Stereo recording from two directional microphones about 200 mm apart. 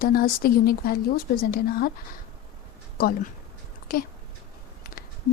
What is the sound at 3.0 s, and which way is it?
Speech, 45° left (ahead or behind).